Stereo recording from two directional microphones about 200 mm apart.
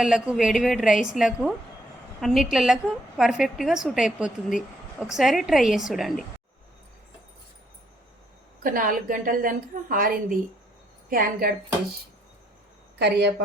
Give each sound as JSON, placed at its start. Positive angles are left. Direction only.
{"t": 0.0, "sound": "a woman's voice", "side_deg": -5}
{"t": 8.6, "sound": "a woman's voice", "side_deg": -45}
{"t": 13.0, "sound": "speech", "side_deg": -55}